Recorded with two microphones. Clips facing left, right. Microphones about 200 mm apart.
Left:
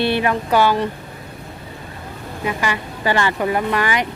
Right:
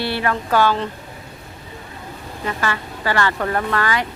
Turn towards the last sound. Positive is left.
turn(degrees=15)  # may be behind; listen again after turning